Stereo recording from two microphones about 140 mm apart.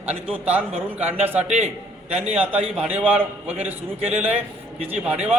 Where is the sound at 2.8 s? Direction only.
10° right (ahead or behind).